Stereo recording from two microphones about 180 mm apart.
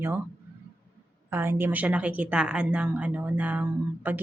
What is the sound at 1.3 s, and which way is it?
A woman's voice, 10° right (ahead or behind).